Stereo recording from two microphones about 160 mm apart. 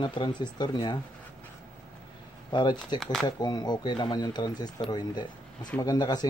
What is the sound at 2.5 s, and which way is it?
Speech, 30° left (ahead or behind).